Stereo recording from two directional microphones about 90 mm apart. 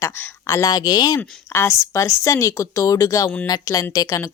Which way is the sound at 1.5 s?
30° left (ahead or behind).